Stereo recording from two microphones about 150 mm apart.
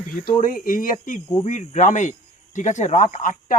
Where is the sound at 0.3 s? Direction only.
65° left (ahead or behind).